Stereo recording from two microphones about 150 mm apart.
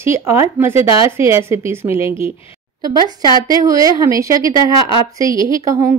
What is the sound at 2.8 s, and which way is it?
A woman's voice, 30° right (ahead or behind).